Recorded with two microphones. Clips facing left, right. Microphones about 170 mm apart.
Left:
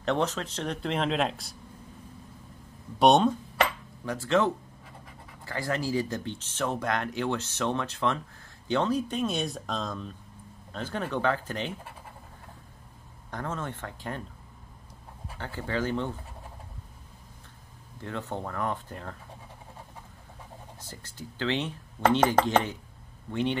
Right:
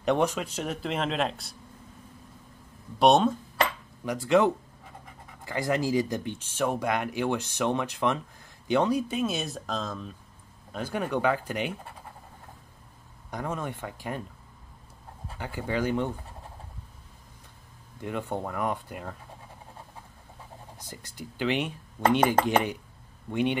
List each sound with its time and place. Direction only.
0.0 s speech: 15° right (ahead or behind)
3.0 s speech: centre (ahead or behind)
4.0 s speech: 15° right (ahead or behind)
13.3 s speech: 10° right (ahead or behind)
15.3 s speech: 10° right (ahead or behind)
18.0 s speech: 15° right (ahead or behind)
20.8 s speech: 15° right (ahead or behind)